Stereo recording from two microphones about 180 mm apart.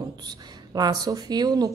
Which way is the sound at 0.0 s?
25° right (ahead or behind).